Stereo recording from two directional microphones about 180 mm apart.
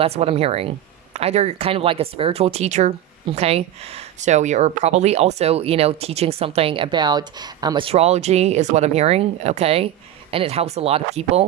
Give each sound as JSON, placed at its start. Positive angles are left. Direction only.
{"t": 0.0, "sound": "speech", "side_deg": -35}